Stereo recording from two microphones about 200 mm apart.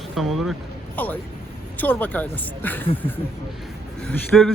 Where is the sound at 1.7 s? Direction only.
10° left (ahead or behind).